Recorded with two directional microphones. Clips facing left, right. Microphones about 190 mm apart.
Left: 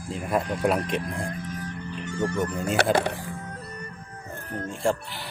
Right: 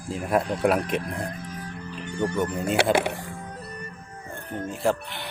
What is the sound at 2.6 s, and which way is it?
Speech, centre (ahead or behind).